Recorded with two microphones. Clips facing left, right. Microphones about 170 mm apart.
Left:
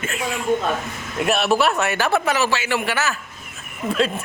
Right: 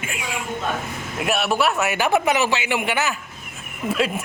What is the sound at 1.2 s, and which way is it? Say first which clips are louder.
A man's voice: left 3 dB; 5° right (ahead or behind).